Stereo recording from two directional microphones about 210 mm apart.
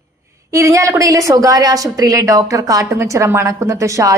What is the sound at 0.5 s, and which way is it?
A woman's voice, 15° right (ahead or behind).